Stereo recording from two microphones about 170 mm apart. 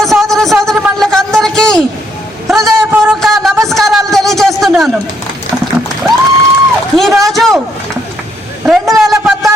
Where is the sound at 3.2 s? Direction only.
Centre (ahead or behind).